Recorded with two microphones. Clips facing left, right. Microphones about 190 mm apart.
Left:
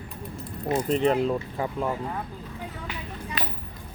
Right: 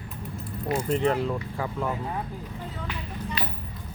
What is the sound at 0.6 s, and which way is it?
Speech, 20° left (ahead or behind).